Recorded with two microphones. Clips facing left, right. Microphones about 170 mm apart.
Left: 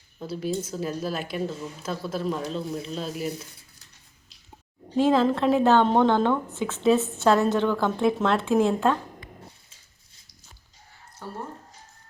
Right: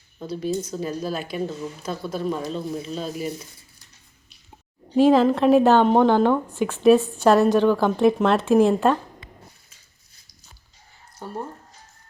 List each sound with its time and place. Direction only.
0.2 s speech: 5° left (ahead or behind)
4.9 s a woman's voice: 15° right (ahead or behind)
11.2 s speech: 20° right (ahead or behind)